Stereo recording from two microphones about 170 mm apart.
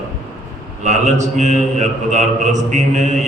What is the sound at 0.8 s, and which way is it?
A man's voice, 45° right (ahead or behind).